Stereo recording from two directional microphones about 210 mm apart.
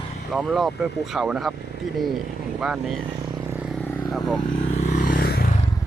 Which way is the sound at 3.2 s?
10° right (ahead or behind).